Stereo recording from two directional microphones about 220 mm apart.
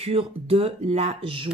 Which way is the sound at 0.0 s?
25° right (ahead or behind).